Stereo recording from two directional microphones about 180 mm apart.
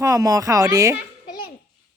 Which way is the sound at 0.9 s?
60° left (ahead or behind).